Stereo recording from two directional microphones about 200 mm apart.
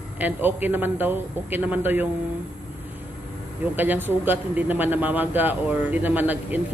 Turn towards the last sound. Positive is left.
turn(degrees=-10)  # may be behind; listen again after turning